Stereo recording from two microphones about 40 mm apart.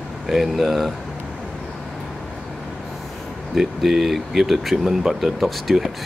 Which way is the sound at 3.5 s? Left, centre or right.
Centre.